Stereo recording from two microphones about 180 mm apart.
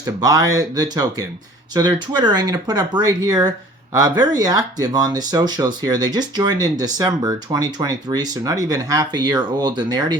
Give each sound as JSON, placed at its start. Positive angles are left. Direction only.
{"t": 0.0, "sound": "speech", "side_deg": -20}